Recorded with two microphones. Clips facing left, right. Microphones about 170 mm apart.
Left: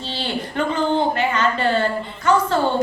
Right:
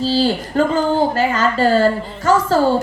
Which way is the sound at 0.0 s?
35° right (ahead or behind).